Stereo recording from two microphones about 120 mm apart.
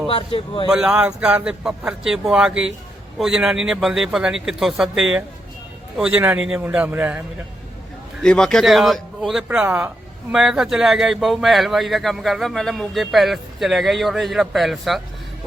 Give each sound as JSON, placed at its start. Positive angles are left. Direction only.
{"t": 0.1, "sound": "speech", "side_deg": 50}
{"t": 0.7, "sound": "speech", "side_deg": -10}
{"t": 8.2, "sound": "speech", "side_deg": 5}
{"t": 9.5, "sound": "speech", "side_deg": -10}